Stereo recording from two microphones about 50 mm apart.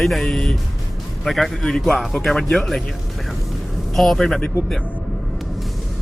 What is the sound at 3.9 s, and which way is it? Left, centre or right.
Speech, centre.